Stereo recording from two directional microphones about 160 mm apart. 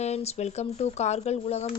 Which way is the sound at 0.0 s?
40° left (ahead or behind).